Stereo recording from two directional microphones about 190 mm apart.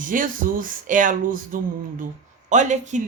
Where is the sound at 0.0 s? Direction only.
45° right (ahead or behind).